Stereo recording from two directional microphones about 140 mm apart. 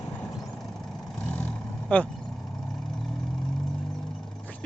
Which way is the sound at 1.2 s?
10° left (ahead or behind).